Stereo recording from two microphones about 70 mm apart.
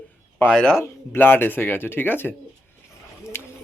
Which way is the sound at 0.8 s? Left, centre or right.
Left.